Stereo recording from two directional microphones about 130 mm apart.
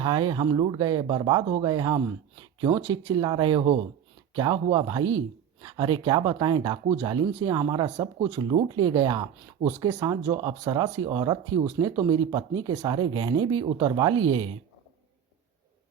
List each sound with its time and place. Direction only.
0.0 s speech: 40° right (ahead or behind)
2.4 s a sound: 30° right (ahead or behind)
3.2 s speech: 35° right (ahead or behind)
6.8 s speech: 60° right (ahead or behind)
7.1 s speech: 35° right (ahead or behind)